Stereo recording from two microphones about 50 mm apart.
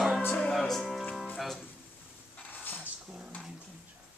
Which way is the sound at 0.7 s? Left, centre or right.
Centre.